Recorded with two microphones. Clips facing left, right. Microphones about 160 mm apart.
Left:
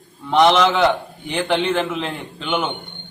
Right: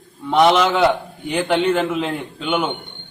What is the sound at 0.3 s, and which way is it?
A man's voice, 5° right (ahead or behind).